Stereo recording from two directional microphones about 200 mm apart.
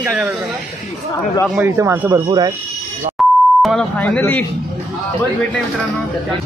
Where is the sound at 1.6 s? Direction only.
15° right (ahead or behind).